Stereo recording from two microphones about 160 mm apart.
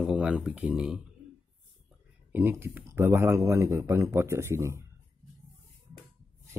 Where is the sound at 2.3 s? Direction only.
15° right (ahead or behind).